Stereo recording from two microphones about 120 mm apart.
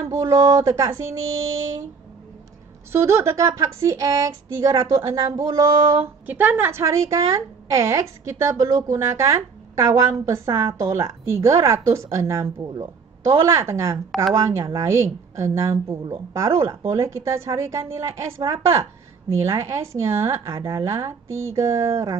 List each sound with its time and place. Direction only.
0.0 s a woman's voice: 25° right (ahead or behind)
2.9 s a woman's voice: 20° right (ahead or behind)
6.2 s a woman's voice: 15° right (ahead or behind)